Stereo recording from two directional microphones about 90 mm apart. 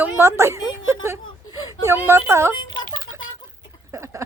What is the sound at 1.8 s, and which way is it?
Speech, 30° right (ahead or behind).